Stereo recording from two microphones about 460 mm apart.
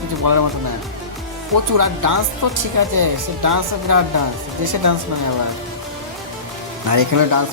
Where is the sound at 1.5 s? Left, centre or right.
Right.